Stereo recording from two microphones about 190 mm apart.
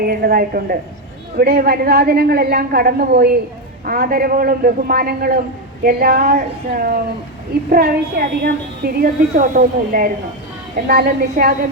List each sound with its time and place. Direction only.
0.0 s a woman's voice: 50° right (ahead or behind)